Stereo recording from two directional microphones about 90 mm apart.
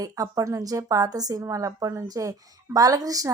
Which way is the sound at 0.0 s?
40° right (ahead or behind).